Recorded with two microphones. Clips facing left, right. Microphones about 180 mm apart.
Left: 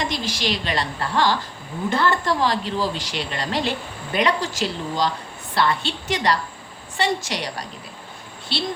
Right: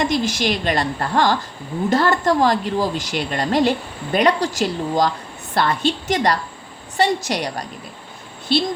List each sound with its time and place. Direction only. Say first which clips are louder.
0.1 s a woman's voice: right 6 dB; 50° right (ahead or behind)